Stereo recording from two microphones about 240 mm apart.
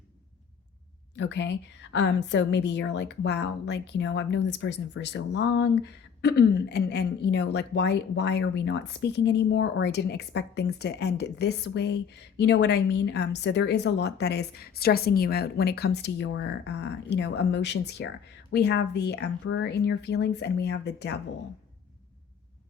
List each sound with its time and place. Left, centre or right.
1.1 s a woman's voice: left